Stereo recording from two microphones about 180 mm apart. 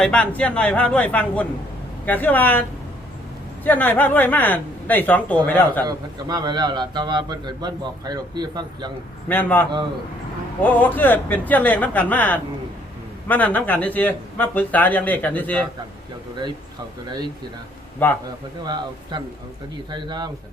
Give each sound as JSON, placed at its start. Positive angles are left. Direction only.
{"t": 0.0, "sound": "speech", "side_deg": 5}
{"t": 5.8, "sound": "a man's voice", "side_deg": -20}
{"t": 9.3, "sound": "speech", "side_deg": 10}
{"t": 17.1, "sound": "a man's voice", "side_deg": -25}
{"t": 18.0, "sound": "speech", "side_deg": 10}
{"t": 18.6, "sound": "a man's voice", "side_deg": -25}